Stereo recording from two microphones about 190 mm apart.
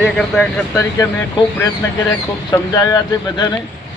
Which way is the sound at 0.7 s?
15° left (ahead or behind).